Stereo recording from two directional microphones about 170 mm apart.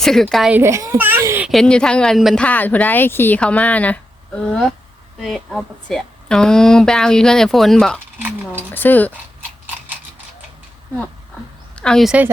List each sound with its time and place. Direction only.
0.0 s a woman's voice: centre (ahead or behind)
0.5 s a child's voice: 15° right (ahead or behind)
1.5 s a woman's voice: 5° left (ahead or behind)
11.8 s speech: 5° left (ahead or behind)